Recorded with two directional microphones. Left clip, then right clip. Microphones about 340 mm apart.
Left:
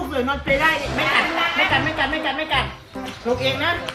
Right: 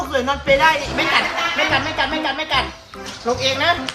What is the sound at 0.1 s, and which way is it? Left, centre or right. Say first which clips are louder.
Speech: right 4 dB; centre.